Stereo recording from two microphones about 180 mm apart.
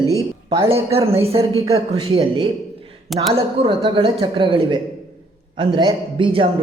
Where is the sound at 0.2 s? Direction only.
20° right (ahead or behind).